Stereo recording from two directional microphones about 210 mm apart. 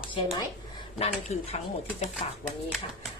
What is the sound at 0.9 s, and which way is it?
Speech, 30° left (ahead or behind).